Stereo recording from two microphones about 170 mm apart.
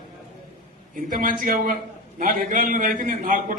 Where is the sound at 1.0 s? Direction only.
55° right (ahead or behind).